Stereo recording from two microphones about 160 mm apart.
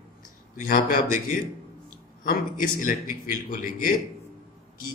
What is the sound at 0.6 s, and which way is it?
Speech, 60° left (ahead or behind).